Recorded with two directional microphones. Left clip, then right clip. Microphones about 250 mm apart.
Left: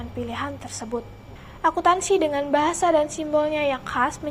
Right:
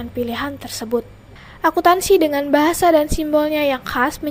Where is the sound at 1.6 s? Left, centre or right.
Right.